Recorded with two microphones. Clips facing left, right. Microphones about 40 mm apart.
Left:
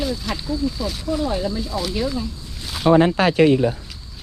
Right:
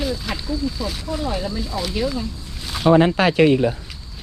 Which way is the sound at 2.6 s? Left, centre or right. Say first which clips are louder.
Right 1 dB; centre.